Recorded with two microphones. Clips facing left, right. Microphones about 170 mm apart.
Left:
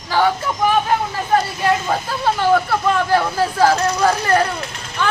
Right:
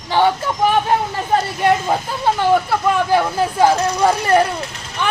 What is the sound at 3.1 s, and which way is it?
Speech, 15° right (ahead or behind).